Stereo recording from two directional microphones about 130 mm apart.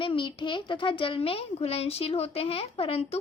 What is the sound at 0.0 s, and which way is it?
A child's voice, 40° left (ahead or behind).